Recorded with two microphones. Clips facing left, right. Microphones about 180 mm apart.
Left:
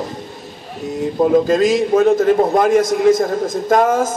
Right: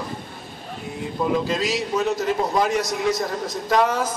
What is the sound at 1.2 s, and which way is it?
A man's voice, 50° left (ahead or behind).